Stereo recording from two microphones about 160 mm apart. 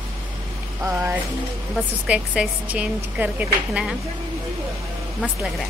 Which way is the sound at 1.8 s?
5° right (ahead or behind).